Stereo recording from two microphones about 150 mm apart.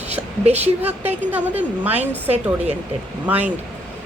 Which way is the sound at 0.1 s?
45° right (ahead or behind).